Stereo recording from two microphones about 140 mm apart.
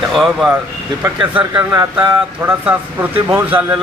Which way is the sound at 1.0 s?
15° right (ahead or behind).